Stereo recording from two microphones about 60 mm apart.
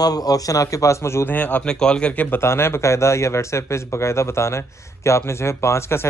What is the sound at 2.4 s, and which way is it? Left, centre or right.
Speech, left.